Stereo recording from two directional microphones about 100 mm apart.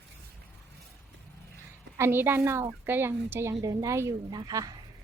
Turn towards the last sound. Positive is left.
turn(degrees=-35)  # may be behind; listen again after turning